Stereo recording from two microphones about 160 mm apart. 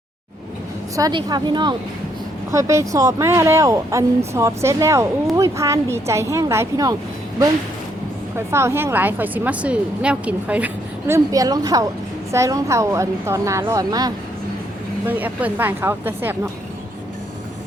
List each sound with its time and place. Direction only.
0.9 s speech: 25° right (ahead or behind)
8.4 s a woman's voice: 15° right (ahead or behind)
15.0 s a woman's voice: 10° right (ahead or behind)